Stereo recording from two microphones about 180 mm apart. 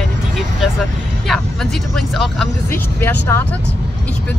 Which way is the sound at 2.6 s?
10° left (ahead or behind).